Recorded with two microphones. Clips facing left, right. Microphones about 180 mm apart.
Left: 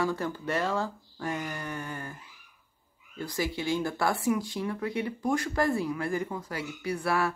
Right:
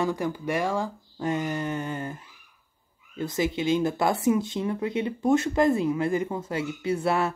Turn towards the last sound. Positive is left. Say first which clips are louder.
# right 4 dB
turn(degrees=-25)  # may be behind; listen again after turning